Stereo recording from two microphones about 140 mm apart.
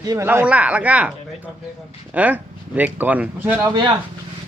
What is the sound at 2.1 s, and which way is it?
Speech, 10° right (ahead or behind).